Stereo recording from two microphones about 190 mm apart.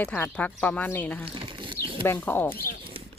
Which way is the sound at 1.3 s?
25° right (ahead or behind).